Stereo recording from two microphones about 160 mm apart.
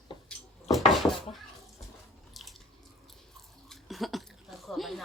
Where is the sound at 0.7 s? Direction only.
Centre (ahead or behind).